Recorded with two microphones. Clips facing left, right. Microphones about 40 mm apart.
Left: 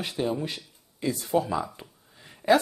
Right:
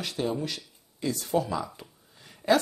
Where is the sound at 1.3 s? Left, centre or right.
Left.